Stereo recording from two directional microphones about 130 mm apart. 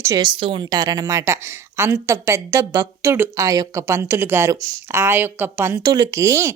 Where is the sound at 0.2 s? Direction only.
40° right (ahead or behind); by 5.8 s 20° right (ahead or behind).